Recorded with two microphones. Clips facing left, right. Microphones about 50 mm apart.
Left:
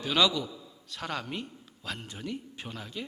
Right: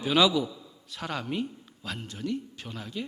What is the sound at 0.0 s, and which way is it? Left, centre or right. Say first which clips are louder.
A man's voice: right 3 dB; centre.